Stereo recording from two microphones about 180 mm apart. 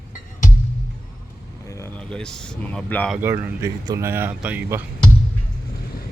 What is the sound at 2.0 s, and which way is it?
A man's voice, 5° left (ahead or behind).